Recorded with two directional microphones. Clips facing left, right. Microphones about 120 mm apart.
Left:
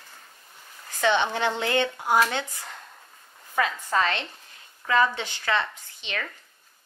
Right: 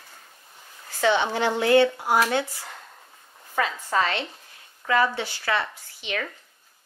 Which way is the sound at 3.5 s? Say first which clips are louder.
Even; 15° right (ahead or behind).